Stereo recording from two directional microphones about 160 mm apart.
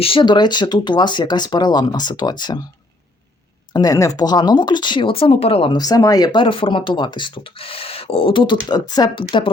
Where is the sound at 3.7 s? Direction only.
25° left (ahead or behind).